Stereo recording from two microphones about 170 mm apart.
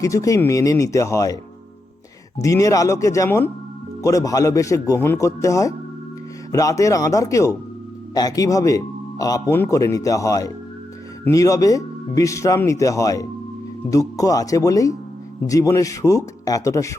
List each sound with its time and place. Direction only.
0.0 s speech: 20° left (ahead or behind)
2.4 s speech: 20° left (ahead or behind)